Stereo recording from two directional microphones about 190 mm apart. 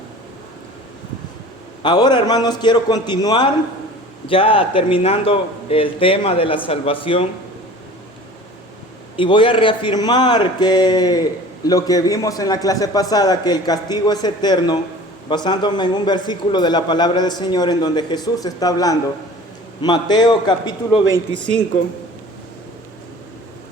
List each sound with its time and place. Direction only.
1.8 s a man's voice: 25° left (ahead or behind)
9.1 s a man's voice: 25° left (ahead or behind)